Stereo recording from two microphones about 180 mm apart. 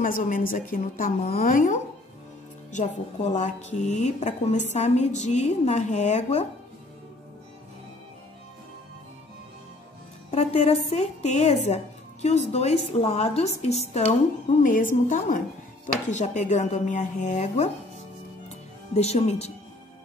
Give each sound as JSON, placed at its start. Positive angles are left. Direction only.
{"t": 0.0, "sound": "a woman's voice", "side_deg": 50}
{"t": 10.3, "sound": "a woman's voice", "side_deg": 35}
{"t": 14.6, "sound": "a woman's voice", "side_deg": 45}
{"t": 18.9, "sound": "a woman's voice", "side_deg": 35}